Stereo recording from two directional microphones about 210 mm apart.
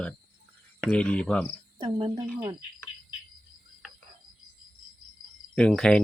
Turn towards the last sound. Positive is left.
turn(degrees=5)  # may be behind; listen again after turning